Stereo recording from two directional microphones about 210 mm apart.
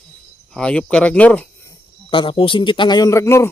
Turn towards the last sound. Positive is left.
turn(degrees=15)  # may be behind; listen again after turning